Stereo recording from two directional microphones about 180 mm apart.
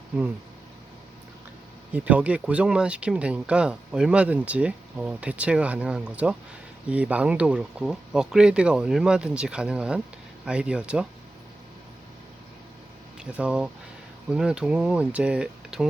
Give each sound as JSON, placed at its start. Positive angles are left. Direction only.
{"t": 1.9, "sound": "speech", "side_deg": -10}
{"t": 13.1, "sound": "speech", "side_deg": -5}